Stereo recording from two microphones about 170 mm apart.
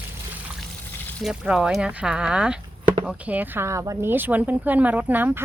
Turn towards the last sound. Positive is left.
turn(degrees=-10)  # may be behind; listen again after turning